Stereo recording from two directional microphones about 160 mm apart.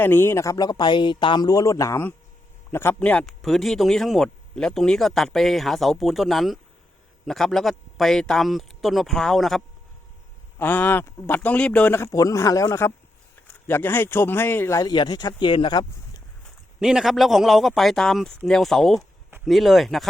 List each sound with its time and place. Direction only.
0.0 s speech: 15° left (ahead or behind)
10.6 s speech: 10° left (ahead or behind); by 15.9 s 30° left (ahead or behind)
16.8 s speech: 5° right (ahead or behind)